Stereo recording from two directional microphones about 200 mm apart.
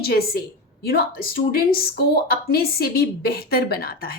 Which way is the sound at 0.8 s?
50° left (ahead or behind).